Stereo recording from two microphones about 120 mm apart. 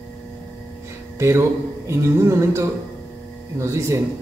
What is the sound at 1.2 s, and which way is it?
A man's voice, 20° right (ahead or behind).